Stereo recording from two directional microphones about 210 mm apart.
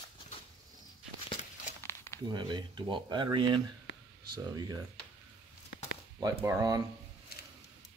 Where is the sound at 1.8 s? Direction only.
15° left (ahead or behind).